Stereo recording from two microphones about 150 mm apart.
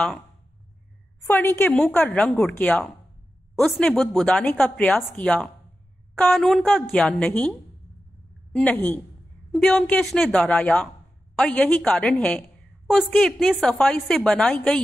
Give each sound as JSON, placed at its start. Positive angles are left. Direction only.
{"t": 1.2, "sound": "a woman's voice", "side_deg": 15}
{"t": 8.5, "sound": "a woman's voice", "side_deg": 10}